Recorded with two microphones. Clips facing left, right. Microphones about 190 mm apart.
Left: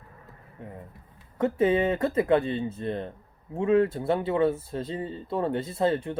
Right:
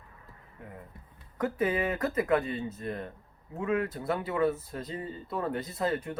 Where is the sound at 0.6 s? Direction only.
25° left (ahead or behind).